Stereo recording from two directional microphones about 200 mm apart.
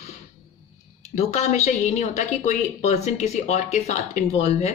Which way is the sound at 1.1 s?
35° left (ahead or behind).